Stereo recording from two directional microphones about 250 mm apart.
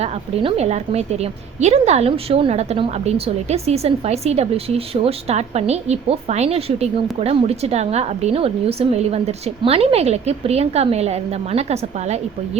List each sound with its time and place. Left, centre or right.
0.0 s a woman's voice: right